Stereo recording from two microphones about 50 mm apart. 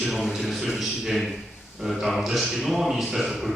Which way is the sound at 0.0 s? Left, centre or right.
Centre.